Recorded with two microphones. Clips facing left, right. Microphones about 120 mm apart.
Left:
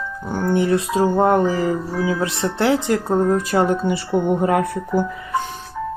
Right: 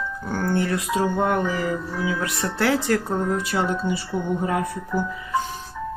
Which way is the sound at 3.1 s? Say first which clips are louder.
Left 6 dB; 40° left (ahead or behind).